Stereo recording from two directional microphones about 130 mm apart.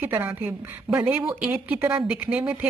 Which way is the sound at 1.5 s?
20° right (ahead or behind).